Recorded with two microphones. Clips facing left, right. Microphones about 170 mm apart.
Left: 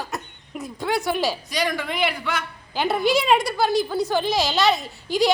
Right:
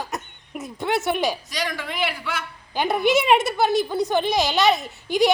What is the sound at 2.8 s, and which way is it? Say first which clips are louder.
A woman's voice: right 1 dB; 15° right (ahead or behind).